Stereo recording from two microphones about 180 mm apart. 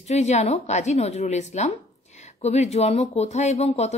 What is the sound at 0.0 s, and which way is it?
Speech, 40° left (ahead or behind).